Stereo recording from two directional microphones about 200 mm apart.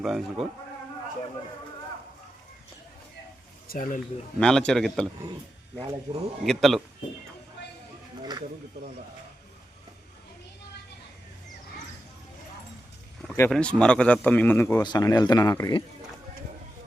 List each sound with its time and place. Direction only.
0.0 s a man's voice: centre (ahead or behind)
3.7 s speech: 45° left (ahead or behind)
4.4 s a man's voice: 5° left (ahead or behind)
6.1 s speech: 20° right (ahead or behind)
6.4 s a man's voice: centre (ahead or behind)
7.6 s a sound: 60° left (ahead or behind)
8.2 s speech: 20° right (ahead or behind)
13.5 s speech: 5° left (ahead or behind)